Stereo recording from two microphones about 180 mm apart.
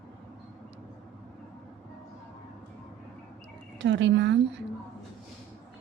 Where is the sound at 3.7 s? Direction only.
90° right.